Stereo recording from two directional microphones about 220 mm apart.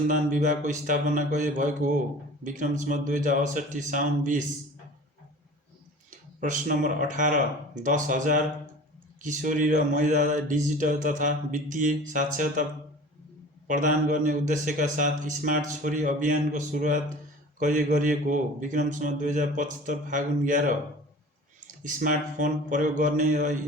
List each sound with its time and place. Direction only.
0.1 s speech: 35° right (ahead or behind)
6.1 s speech: 35° right (ahead or behind)
13.7 s speech: 35° right (ahead or behind)